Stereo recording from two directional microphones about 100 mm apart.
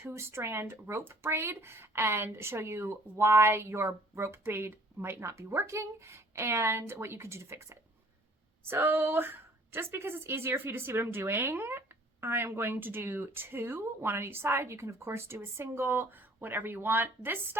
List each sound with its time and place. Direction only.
0.0 s speech: 25° right (ahead or behind)